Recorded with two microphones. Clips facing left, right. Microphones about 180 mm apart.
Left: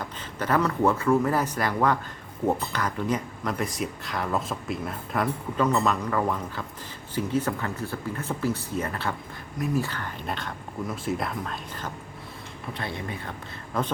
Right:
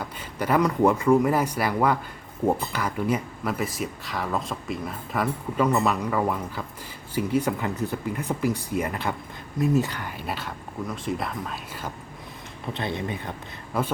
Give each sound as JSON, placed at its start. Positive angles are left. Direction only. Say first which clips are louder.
{"t": 0.0, "sound": "speech", "louder": "right 2 dB", "side_deg": -10}
{"t": 12.7, "sound": "speech", "louder": "right 4 dB", "side_deg": -20}
{"t": 13.7, "sound": "speech", "louder": "right 1 dB", "side_deg": -10}